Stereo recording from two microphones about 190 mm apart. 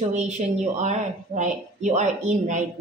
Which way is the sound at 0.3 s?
40° right (ahead or behind).